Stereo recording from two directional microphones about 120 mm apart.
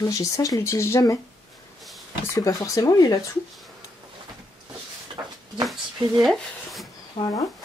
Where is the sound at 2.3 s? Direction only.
30° left (ahead or behind).